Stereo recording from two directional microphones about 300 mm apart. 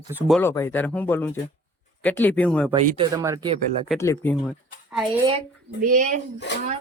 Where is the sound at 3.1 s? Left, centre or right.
Centre.